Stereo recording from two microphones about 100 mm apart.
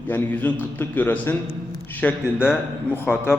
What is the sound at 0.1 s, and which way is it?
A man's voice, 15° left (ahead or behind).